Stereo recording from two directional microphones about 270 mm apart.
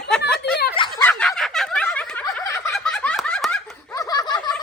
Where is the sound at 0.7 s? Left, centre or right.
Centre.